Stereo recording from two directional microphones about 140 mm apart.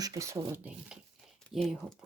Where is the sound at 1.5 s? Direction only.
Centre (ahead or behind).